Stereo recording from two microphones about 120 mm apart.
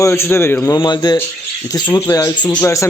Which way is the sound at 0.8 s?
35° left (ahead or behind).